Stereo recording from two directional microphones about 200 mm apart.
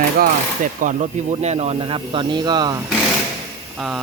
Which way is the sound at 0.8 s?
35° right (ahead or behind).